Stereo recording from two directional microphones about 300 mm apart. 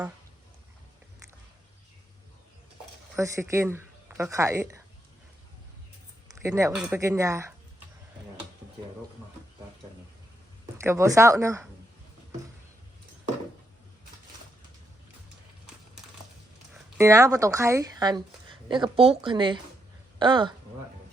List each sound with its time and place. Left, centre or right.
3.2 s speech: centre
6.3 s speech: centre
10.8 s speech: centre
17.0 s speech: centre